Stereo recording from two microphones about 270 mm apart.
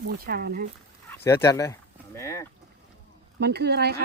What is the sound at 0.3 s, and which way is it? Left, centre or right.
Speech, right.